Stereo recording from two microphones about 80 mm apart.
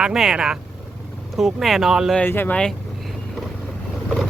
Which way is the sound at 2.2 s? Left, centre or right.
Left.